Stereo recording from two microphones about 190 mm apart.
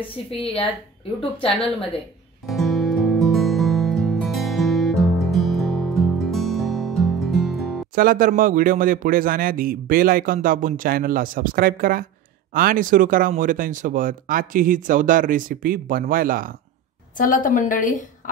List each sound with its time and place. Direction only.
2.4 s music: centre (ahead or behind)
7.9 s a man's voice: 50° right (ahead or behind)
17.2 s a woman's voice: 40° left (ahead or behind)